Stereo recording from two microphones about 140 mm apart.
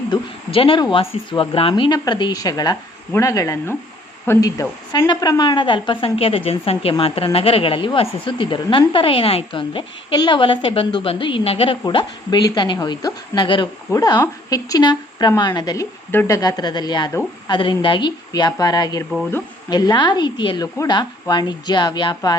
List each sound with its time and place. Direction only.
0.1 s a woman's voice: 40° left (ahead or behind)